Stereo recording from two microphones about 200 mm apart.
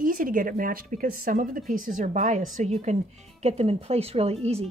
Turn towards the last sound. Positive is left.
turn(degrees=-30)  # may be behind; listen again after turning